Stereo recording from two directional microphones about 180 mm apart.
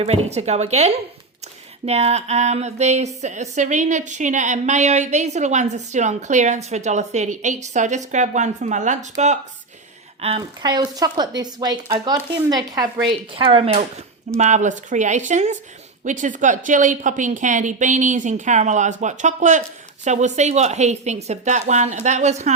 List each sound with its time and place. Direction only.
0.0 s a woman's voice: 35° right (ahead or behind)